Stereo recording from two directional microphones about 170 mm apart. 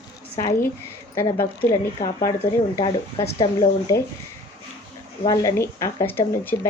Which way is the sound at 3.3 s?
25° left (ahead or behind).